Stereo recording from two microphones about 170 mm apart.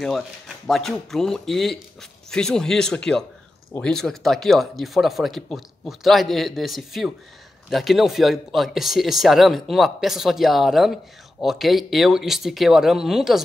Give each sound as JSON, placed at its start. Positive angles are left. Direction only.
{"t": 0.7, "sound": "speech", "side_deg": 0}